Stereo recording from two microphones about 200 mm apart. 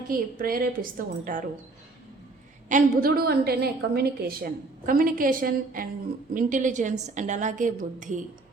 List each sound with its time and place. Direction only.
0.1 s a woman's voice: 45° right (ahead or behind)
2.6 s a woman's voice: 45° right (ahead or behind)